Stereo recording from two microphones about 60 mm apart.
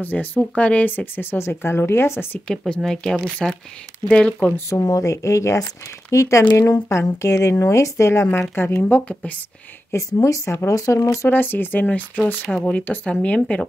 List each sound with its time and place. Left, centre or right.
0.0 s speech: left
2.4 s speech: centre
4.6 s a woman's voice: left
4.8 s a woman's voice: left
8.8 s speech: left
9.9 s a woman's voice: left
10.7 s a woman's voice: left
11.2 s speech: left